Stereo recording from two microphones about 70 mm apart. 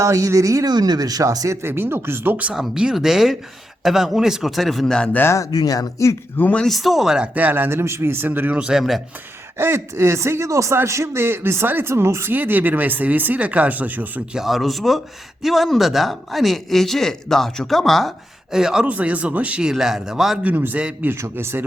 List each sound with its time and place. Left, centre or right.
0.0 s speech: right
0.7 s speech: right
1.6 s speech: right
2.5 s speech: centre
5.5 s speech: left
6.3 s speech: left
6.6 s speech: centre
7.3 s speech: right
9.6 s speech: right
12.3 s speech: right
14.3 s speech: centre
18.9 s speech: centre
20.4 s speech: right
21.1 s speech: right